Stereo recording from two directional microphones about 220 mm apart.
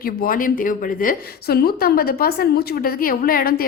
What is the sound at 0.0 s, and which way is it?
A woman's voice, 40° left (ahead or behind).